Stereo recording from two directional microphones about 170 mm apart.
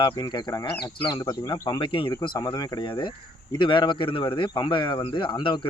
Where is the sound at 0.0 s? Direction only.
25° left (ahead or behind).